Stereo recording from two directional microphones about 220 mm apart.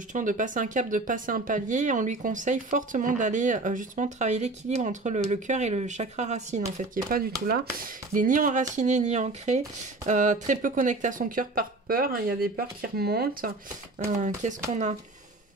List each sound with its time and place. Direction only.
0.1 s speech: 35° right (ahead or behind)